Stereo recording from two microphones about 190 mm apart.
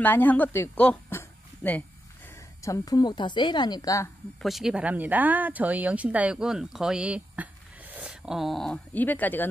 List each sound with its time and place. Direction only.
0.0 s a woman's voice: 10° left (ahead or behind)
4.4 s speech: centre (ahead or behind)